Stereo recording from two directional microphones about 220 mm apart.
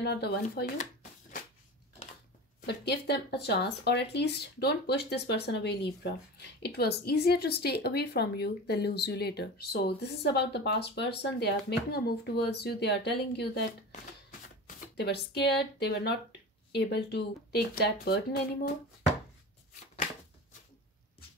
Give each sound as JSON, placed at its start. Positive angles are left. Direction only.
{"t": 0.0, "sound": "speech", "side_deg": 50}
{"t": 2.6, "sound": "speech", "side_deg": 50}
{"t": 15.0, "sound": "speech", "side_deg": 50}